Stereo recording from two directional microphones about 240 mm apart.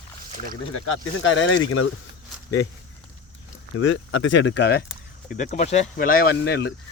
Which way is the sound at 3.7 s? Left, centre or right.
Left.